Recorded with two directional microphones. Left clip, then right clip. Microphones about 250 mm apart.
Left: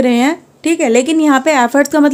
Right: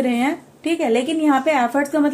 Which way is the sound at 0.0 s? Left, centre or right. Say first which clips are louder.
Left 8 dB; left.